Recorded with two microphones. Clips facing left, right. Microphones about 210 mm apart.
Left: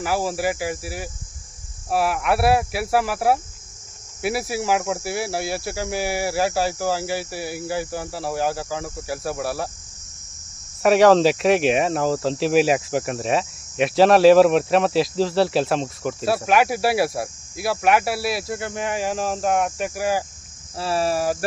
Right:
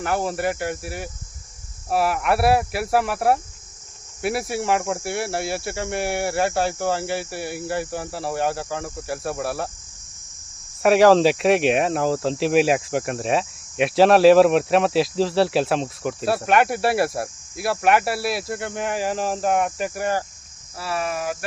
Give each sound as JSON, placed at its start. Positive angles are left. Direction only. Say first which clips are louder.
{"t": 0.0, "sound": "speech", "louder": "even", "side_deg": 0}
{"t": 10.8, "sound": "speech", "louder": "even", "side_deg": 0}
{"t": 20.7, "sound": "speech", "louder": "left 4 dB", "side_deg": 30}